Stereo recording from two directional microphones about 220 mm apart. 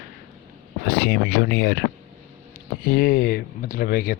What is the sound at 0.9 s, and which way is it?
Speech, 45° left (ahead or behind).